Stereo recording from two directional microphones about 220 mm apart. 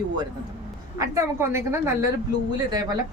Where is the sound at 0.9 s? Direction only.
15° right (ahead or behind).